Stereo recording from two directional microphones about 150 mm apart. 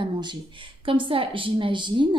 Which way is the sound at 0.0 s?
30° right (ahead or behind).